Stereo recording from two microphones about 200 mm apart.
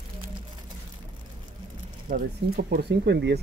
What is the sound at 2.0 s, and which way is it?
Speech, 45° right (ahead or behind).